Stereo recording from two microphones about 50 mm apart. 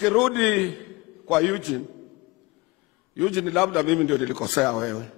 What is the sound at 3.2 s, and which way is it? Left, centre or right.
A man's voice, centre.